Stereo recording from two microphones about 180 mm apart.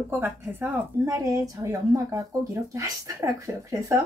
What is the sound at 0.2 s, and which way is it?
A woman's voice, 10° right (ahead or behind).